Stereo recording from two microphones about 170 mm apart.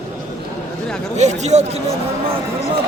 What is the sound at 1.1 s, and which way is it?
Speech, 40° right (ahead or behind).